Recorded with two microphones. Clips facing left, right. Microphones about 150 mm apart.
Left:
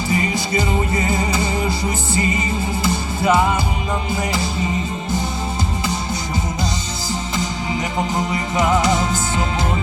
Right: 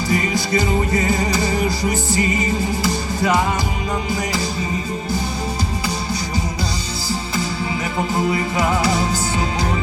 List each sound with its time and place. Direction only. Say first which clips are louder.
0.1 s music: right 1 dB; 20° left (ahead or behind)
8.1 s music: right 2 dB; 20° left (ahead or behind)